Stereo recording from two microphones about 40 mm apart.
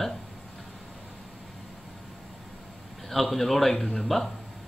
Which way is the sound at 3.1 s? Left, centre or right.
Centre.